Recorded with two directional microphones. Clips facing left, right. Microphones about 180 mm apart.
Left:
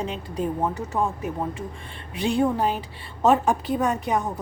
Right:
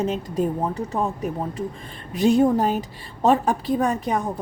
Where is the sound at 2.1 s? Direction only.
40° right (ahead or behind).